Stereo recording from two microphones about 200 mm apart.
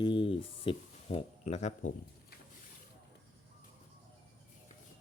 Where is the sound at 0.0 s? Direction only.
25° left (ahead or behind).